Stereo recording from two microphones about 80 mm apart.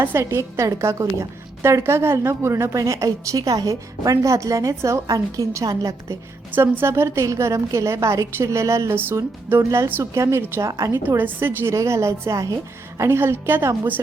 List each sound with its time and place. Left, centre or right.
0.0 s a woman's voice: right
2.7 s a woman's voice: right
6.5 s a woman's voice: right
11.2 s a woman's voice: right
11.7 s a woman's voice: right